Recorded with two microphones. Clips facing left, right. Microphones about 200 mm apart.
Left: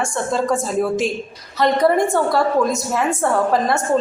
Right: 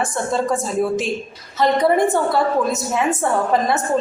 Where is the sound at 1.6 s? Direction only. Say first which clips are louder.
Even; centre (ahead or behind).